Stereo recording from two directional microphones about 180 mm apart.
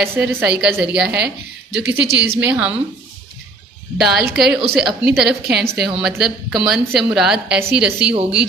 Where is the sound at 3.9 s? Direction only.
5° right (ahead or behind).